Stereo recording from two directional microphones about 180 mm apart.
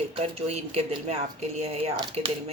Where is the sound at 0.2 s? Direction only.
35° right (ahead or behind).